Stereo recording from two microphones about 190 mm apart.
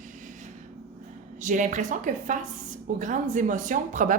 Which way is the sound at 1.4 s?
40° right (ahead or behind).